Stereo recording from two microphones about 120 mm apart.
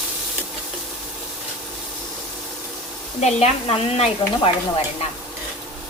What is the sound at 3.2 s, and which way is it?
Speech, 60° left (ahead or behind).